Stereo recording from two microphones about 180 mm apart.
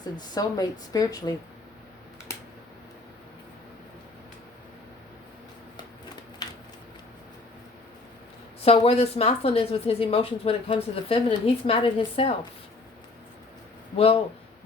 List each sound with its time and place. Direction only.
0.0 s a woman's voice: 20° left (ahead or behind)
6.4 s a sound: 20° left (ahead or behind)
8.6 s a woman's voice: 35° left (ahead or behind)
13.9 s speech: 30° left (ahead or behind)